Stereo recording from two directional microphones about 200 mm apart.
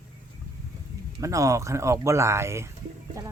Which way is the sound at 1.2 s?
15° right (ahead or behind).